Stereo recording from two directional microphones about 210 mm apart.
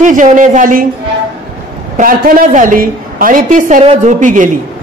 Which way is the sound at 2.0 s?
40° right (ahead or behind).